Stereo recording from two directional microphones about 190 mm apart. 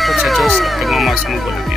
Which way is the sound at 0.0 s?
Centre (ahead or behind).